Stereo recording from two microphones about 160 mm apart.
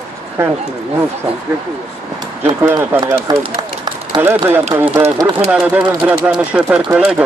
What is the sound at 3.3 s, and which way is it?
Run, 30° right (ahead or behind).